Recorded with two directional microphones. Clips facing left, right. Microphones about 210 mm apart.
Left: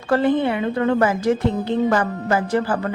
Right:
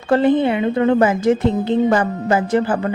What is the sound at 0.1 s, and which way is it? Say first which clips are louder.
A woman's voice: right 3 dB; 20° right (ahead or behind).